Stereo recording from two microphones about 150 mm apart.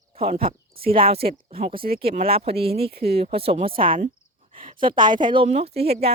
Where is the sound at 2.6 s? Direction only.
90° right.